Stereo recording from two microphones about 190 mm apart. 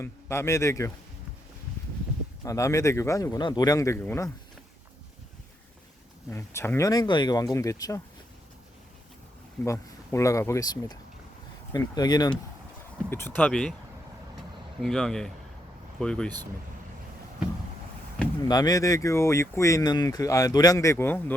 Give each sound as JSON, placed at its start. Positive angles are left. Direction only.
{"t": 0.0, "sound": "speech", "side_deg": 15}
{"t": 2.4, "sound": "speech", "side_deg": 15}
{"t": 6.3, "sound": "speech", "side_deg": 15}
{"t": 9.6, "sound": "speech", "side_deg": 15}
{"t": 14.8, "sound": "speech", "side_deg": 5}
{"t": 18.4, "sound": "speech", "side_deg": 20}